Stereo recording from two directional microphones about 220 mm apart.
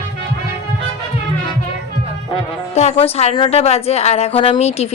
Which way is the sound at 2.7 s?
30° left (ahead or behind).